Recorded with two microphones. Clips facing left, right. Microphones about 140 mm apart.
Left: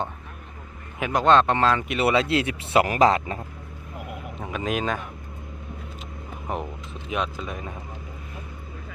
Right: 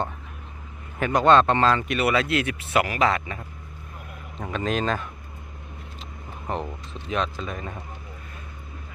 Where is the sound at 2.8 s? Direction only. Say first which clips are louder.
Left 4 dB; 35° left (ahead or behind).